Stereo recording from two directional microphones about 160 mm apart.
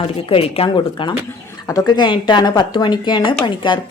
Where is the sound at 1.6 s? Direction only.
25° left (ahead or behind).